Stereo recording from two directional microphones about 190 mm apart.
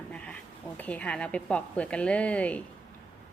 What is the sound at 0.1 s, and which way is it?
Bee, 5° left (ahead or behind).